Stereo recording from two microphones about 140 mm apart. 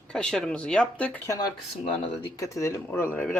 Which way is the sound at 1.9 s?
40° left (ahead or behind).